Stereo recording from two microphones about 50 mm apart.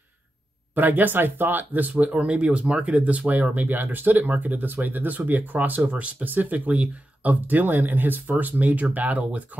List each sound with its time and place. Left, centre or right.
0.7 s speech: right